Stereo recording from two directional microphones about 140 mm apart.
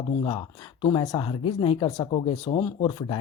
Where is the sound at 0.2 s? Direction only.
35° left (ahead or behind).